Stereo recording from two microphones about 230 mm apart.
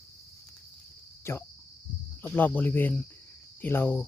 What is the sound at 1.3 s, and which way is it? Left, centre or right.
Cricket, centre.